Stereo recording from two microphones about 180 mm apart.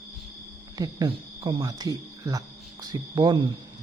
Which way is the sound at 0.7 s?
20° right (ahead or behind).